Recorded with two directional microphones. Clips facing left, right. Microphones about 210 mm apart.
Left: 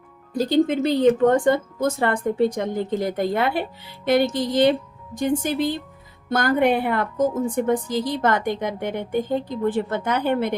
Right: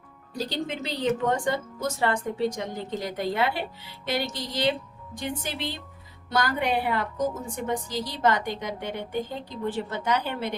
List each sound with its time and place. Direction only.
0.3 s speech: 50° left (ahead or behind)